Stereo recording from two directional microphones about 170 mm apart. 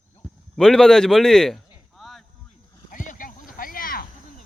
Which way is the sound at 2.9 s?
50° left (ahead or behind).